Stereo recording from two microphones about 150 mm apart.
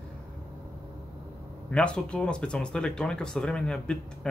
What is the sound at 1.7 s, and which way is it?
Speech, 5° left (ahead or behind).